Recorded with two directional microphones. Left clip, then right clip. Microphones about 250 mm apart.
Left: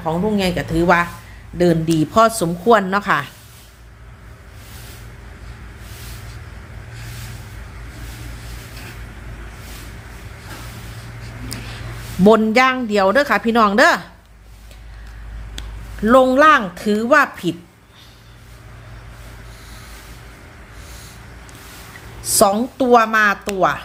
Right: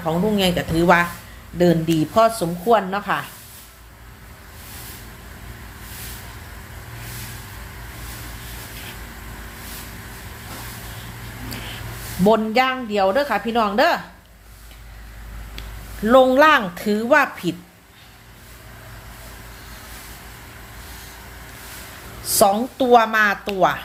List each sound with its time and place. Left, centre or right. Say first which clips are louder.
0.0 s speech: even; centre; by 3.2 s left
12.2 s speech: left 4 dB; left
16.0 s a woman's voice: left 2 dB; centre
22.2 s a woman's voice: left 2 dB; centre